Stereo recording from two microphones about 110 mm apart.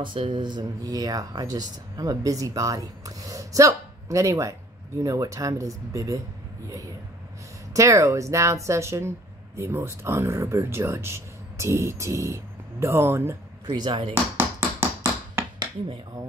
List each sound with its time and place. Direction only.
0.0 s speech: 50° right (ahead or behind); by 6.2 s 30° right (ahead or behind)
7.7 s speech: 30° right (ahead or behind)
13.7 s speech: 40° right (ahead or behind)
14.1 s a sound: 20° right (ahead or behind)